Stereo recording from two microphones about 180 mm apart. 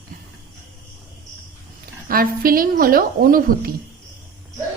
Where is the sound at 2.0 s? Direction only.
55° right (ahead or behind).